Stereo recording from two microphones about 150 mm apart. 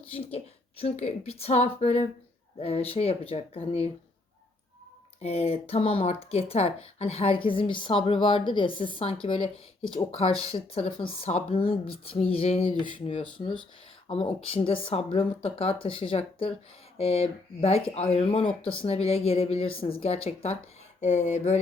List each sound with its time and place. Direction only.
0.0 s a woman's voice: 40° left (ahead or behind)
5.2 s a woman's voice: 40° left (ahead or behind)
13.4 s speech: 50° left (ahead or behind)
14.1 s a woman's voice: 35° left (ahead or behind)